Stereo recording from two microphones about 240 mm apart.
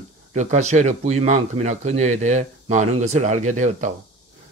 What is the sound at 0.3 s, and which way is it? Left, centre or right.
Speech, right.